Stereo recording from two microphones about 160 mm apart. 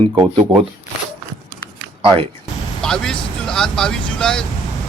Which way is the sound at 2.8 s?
5° left (ahead or behind).